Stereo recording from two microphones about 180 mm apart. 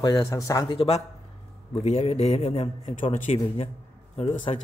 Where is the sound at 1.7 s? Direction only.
35° left (ahead or behind).